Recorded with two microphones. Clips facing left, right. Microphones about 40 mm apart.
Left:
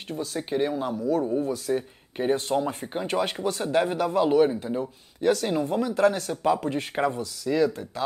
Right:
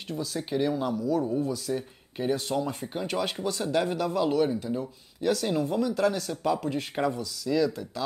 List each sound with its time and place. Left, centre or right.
0.2 s speech: left
1.2 s speech: centre
1.5 s speech: left